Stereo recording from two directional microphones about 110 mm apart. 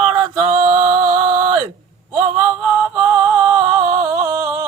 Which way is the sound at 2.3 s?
15° right (ahead or behind).